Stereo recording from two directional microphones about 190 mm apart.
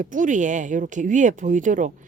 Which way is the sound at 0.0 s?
45° right (ahead or behind).